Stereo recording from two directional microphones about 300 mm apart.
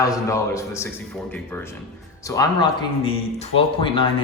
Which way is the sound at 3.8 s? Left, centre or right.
Centre.